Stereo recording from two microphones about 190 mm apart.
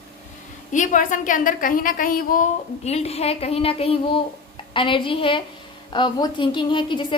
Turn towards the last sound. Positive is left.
turn(degrees=25)  # may be behind; listen again after turning